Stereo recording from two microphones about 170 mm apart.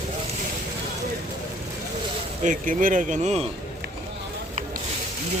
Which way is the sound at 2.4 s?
50° right (ahead or behind).